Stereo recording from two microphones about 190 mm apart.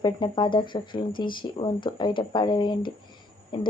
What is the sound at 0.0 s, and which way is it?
Speech, 25° left (ahead or behind).